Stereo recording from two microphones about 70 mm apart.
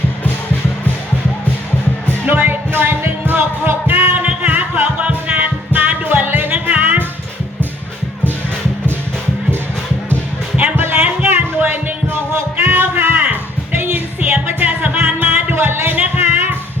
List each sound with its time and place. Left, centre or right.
2.2 s music: right
10.6 s music: right